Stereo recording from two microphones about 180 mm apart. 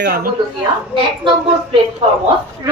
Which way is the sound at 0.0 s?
60° right (ahead or behind).